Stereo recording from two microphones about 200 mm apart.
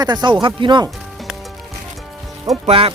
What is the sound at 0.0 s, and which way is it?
Speech, 20° right (ahead or behind).